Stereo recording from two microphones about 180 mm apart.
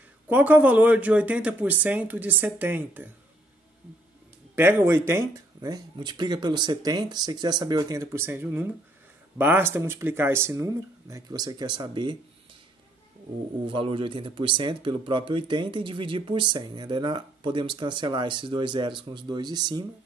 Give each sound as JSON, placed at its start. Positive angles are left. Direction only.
{"t": 0.3, "sound": "speech", "side_deg": -10}
{"t": 4.6, "sound": "speech", "side_deg": -10}
{"t": 13.7, "sound": "speech", "side_deg": -30}